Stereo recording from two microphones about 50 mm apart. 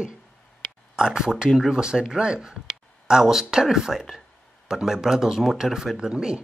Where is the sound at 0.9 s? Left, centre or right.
Centre.